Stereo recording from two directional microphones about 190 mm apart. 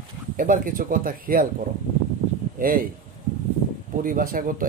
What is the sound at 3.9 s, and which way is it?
Speech, 45° right (ahead or behind).